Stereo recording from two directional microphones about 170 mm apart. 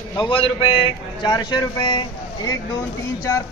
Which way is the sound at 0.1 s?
25° left (ahead or behind).